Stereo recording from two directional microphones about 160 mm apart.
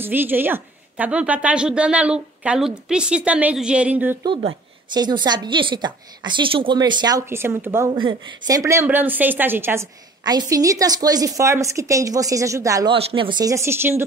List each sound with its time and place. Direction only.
0.0 s a woman's voice: 10° right (ahead or behind)
4.9 s a woman's voice: 25° right (ahead or behind)
12.9 s a woman's voice: 30° right (ahead or behind); by 14.0 s 15° right (ahead or behind)